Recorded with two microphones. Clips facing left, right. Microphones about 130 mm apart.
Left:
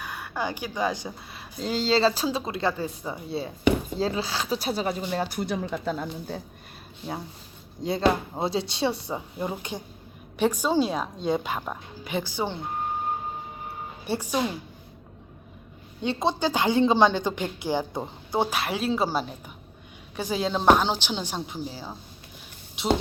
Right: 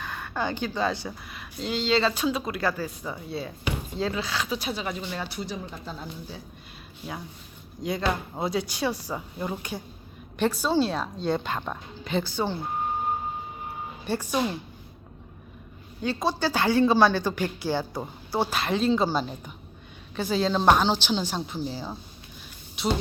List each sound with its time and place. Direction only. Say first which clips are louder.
0.0 s speech: right 1 dB; 10° left (ahead or behind)
1.3 s speech: left 2 dB; 35° left (ahead or behind); by 5.5 s 50° left (ahead or behind)
5.6 s speech: left 8 dB; 70° left (ahead or behind)
7.8 s a woman's voice: left 4 dB; 30° left (ahead or behind); by 12.5 s 15° left (ahead or behind)
14.0 s a woman's voice: even; 15° left (ahead or behind)
16.0 s speech: left 1 dB; 25° left (ahead or behind)
18.5 s a woman's voice: right 3 dB; 5° left (ahead or behind)